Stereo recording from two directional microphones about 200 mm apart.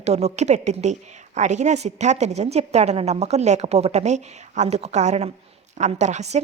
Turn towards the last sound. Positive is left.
turn(degrees=-35)  # may be behind; listen again after turning